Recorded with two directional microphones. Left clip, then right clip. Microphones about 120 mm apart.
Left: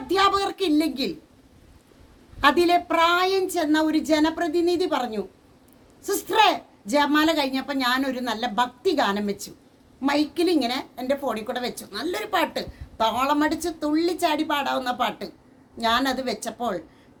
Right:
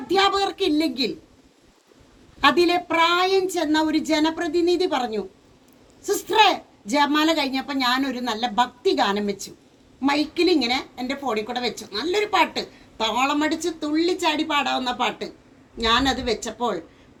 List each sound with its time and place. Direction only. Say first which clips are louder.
0.1 s a woman's voice: right 1 dB; 45° left (ahead or behind)
2.4 s speech: even; 40° left (ahead or behind)